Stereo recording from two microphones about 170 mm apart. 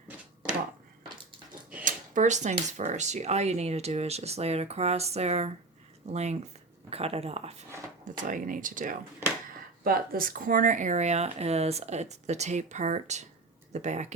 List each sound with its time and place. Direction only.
1.8 s speech: 45° right (ahead or behind)
8.2 s speech: 50° right (ahead or behind)